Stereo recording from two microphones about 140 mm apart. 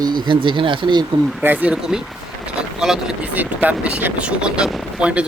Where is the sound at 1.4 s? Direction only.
10° right (ahead or behind).